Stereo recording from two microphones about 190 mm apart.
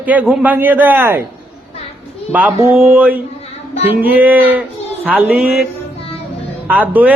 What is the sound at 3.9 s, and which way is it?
Speech, 10° right (ahead or behind).